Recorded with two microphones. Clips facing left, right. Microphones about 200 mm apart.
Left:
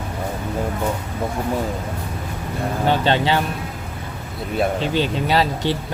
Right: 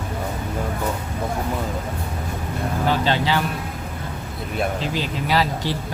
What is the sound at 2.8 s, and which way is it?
Speech, 25° left (ahead or behind).